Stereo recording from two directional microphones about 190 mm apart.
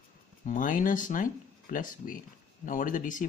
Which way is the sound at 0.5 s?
45° left (ahead or behind).